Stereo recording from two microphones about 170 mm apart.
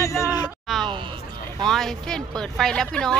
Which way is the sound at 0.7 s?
Centre (ahead or behind).